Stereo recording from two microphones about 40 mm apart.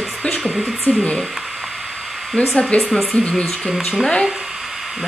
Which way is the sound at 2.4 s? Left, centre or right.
Left.